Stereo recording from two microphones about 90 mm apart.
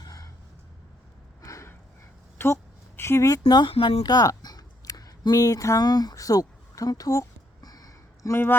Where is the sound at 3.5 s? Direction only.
55° left (ahead or behind).